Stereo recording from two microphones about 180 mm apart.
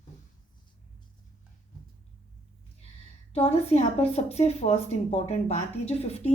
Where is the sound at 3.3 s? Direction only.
35° left (ahead or behind).